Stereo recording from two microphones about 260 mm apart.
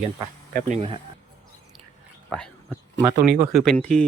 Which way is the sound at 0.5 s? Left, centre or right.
Right.